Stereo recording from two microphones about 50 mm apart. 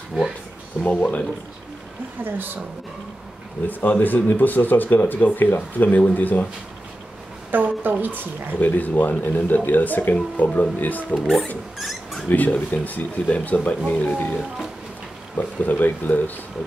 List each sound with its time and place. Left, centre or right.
0.8 s speech: left
2.2 s speech: right
3.6 s speech: left
7.5 s speech: right
8.5 s speech: left
11.8 s speech: centre
12.3 s speech: left
15.3 s speech: left